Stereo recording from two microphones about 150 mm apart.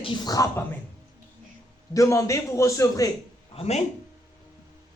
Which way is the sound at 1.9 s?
20° left (ahead or behind).